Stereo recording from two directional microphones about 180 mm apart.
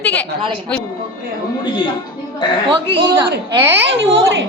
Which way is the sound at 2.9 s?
70° right (ahead or behind).